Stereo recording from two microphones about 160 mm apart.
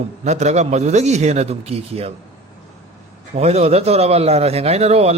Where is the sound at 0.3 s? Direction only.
45° right (ahead or behind).